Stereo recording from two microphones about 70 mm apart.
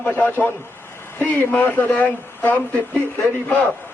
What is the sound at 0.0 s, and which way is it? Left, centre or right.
A man's voice, left.